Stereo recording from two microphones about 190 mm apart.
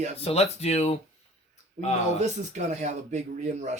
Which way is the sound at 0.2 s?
30° left (ahead or behind).